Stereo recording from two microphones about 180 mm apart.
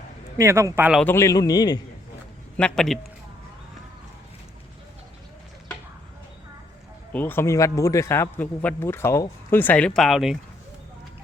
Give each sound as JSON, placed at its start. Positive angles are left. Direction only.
{"t": 0.3, "sound": "speech", "side_deg": -15}
{"t": 1.0, "sound": "a man's voice", "side_deg": 15}
{"t": 2.6, "sound": "a man's voice", "side_deg": 5}
{"t": 7.1, "sound": "a man's voice", "side_deg": 10}